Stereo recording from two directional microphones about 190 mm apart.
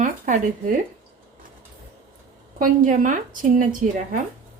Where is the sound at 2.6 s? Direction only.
45° right (ahead or behind).